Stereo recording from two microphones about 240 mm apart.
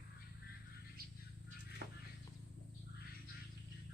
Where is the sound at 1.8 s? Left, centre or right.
Right.